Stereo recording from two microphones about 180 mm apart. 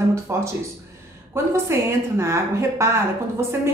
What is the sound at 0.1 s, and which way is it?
A woman's voice, 15° right (ahead or behind).